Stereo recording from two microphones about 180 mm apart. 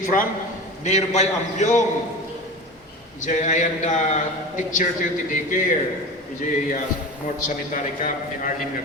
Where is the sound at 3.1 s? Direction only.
40° left (ahead or behind).